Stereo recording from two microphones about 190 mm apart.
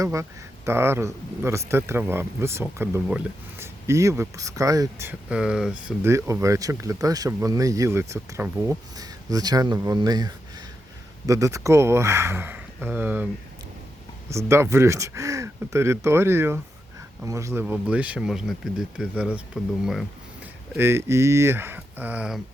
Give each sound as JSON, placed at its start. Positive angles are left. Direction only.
{"t": 0.0, "sound": "speech", "side_deg": -15}
{"t": 6.0, "sound": "speech", "side_deg": -15}
{"t": 14.3, "sound": "speech", "side_deg": -15}
{"t": 20.7, "sound": "speech", "side_deg": -10}